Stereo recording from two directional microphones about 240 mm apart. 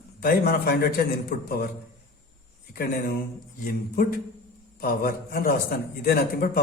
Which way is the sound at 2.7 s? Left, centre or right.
Left.